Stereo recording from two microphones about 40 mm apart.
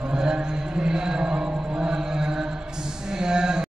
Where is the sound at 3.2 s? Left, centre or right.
Centre.